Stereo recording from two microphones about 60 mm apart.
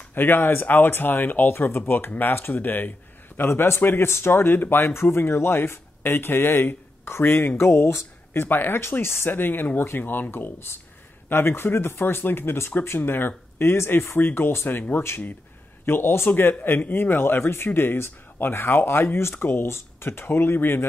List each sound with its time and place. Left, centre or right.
0.1 s a man's voice: left